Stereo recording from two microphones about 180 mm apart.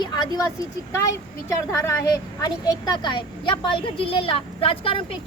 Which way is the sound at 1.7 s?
15° left (ahead or behind).